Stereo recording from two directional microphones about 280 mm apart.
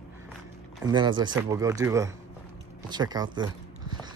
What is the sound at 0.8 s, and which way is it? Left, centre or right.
Speech, centre.